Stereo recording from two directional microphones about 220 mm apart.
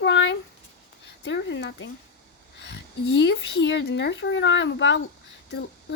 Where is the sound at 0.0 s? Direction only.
55° left (ahead or behind).